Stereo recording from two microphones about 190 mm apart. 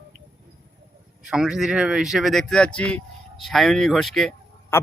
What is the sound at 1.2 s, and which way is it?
Speech, 5° right (ahead or behind).